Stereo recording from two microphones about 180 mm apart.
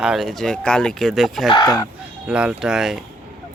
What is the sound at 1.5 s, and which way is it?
Speech, 25° left (ahead or behind).